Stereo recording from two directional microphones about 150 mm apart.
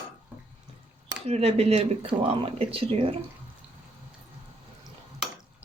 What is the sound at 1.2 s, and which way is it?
Speech, 45° right (ahead or behind).